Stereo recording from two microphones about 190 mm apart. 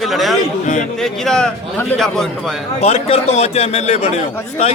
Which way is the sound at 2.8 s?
35° left (ahead or behind).